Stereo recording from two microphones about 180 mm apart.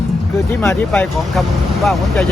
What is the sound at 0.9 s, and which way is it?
Speech, centre (ahead or behind).